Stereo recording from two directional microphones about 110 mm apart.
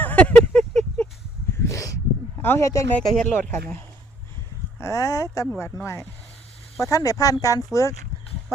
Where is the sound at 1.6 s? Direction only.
30° left (ahead or behind).